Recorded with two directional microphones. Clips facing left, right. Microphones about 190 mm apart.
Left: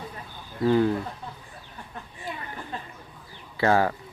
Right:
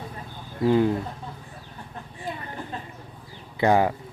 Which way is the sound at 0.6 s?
15° right (ahead or behind).